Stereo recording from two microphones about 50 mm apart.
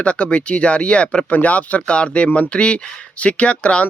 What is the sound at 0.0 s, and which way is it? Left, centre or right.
Speech, left.